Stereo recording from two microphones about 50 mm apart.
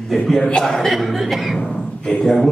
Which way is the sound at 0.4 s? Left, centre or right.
Left.